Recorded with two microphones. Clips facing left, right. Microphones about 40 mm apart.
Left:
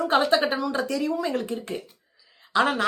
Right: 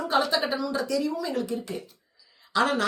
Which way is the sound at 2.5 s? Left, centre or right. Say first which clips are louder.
Left 2 dB; left.